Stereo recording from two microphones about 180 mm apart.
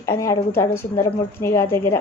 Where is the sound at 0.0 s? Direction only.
15° left (ahead or behind).